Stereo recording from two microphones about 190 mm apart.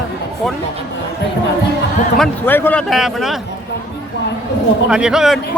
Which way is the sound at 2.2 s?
10° left (ahead or behind).